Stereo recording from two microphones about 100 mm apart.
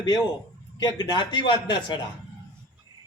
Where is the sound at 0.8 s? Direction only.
45° left (ahead or behind).